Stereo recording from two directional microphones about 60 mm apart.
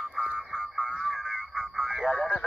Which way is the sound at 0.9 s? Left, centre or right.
Centre.